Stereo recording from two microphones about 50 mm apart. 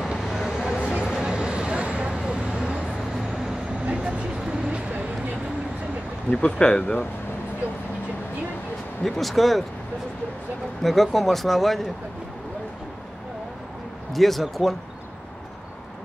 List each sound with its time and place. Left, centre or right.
0.0 s vehicle: centre
3.8 s vehicle: right
6.3 s speech: left
9.0 s speech: centre
10.8 s speech: centre
14.1 s speech: centre